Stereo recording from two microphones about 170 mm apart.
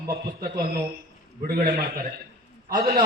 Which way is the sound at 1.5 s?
60° right (ahead or behind).